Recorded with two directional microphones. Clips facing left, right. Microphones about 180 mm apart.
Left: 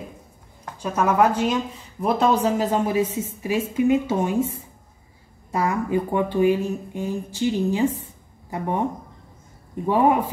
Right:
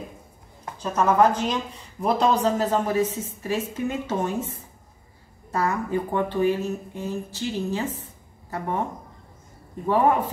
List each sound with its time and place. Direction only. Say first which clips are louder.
0.7 s speech: even; 10° left (ahead or behind)